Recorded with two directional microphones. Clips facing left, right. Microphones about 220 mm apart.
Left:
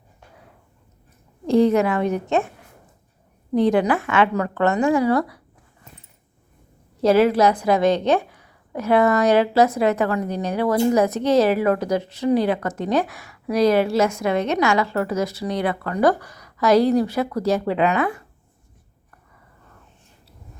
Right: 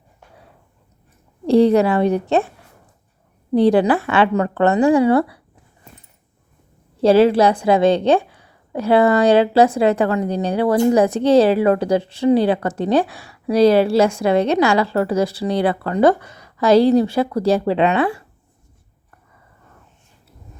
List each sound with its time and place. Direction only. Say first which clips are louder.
1.5 s a woman's voice: right 4 dB; 35° right (ahead or behind)
3.5 s a woman's voice: right 4 dB; 35° right (ahead or behind)
7.0 s a woman's voice: right 3 dB; 30° right (ahead or behind)